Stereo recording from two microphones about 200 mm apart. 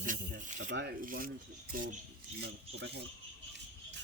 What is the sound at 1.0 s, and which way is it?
Speech, 45° right (ahead or behind).